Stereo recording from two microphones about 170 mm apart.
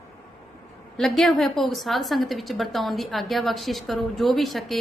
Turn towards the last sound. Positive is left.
turn(degrees=0)  # may be behind; listen again after turning